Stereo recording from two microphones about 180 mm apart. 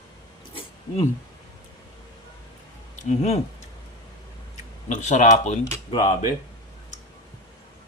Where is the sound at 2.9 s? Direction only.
40° left (ahead or behind).